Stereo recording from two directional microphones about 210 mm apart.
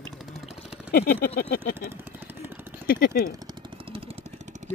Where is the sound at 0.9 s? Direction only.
45° left (ahead or behind).